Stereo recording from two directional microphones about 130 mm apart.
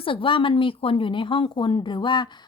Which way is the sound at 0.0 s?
40° left (ahead or behind).